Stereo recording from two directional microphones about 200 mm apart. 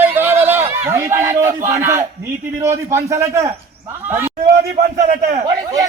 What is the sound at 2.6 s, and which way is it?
Speech, 15° right (ahead or behind).